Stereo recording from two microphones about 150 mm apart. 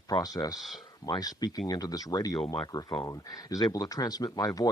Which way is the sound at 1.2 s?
25° left (ahead or behind).